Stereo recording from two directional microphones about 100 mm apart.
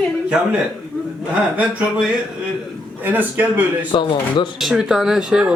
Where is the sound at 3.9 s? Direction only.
55° left (ahead or behind).